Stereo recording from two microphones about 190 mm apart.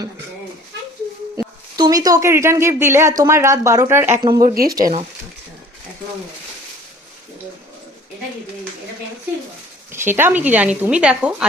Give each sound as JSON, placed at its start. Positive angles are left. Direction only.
{"t": 1.7, "sound": "speech", "side_deg": -20}
{"t": 4.4, "sound": "speech", "side_deg": -50}
{"t": 9.9, "sound": "speech", "side_deg": -10}